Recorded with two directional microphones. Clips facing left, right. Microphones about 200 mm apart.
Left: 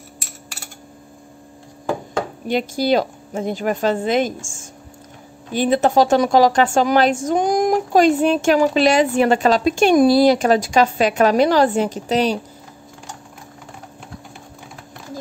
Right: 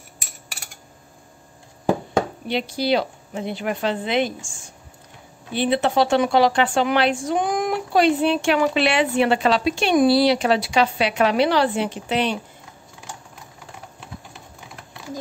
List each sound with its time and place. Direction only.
2.4 s a woman's voice: 45° left (ahead or behind)